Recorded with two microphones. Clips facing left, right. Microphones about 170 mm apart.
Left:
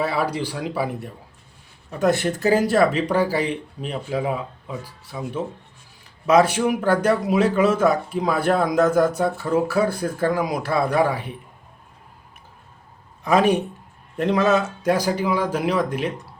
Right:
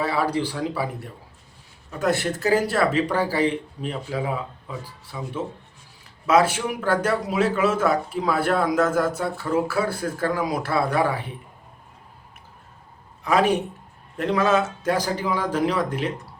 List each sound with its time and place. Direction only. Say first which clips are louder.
0.1 s speech: even; 15° left (ahead or behind)
2.0 s speech: left 3 dB; 20° left (ahead or behind)
6.2 s speech: left 3 dB; 15° left (ahead or behind)
13.2 s speech: left 2 dB; 15° left (ahead or behind)